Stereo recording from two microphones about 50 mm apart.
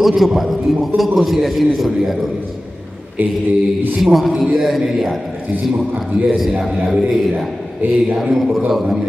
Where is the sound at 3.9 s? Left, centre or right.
Centre.